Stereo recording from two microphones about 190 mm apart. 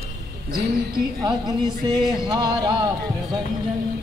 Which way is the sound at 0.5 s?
55° right (ahead or behind).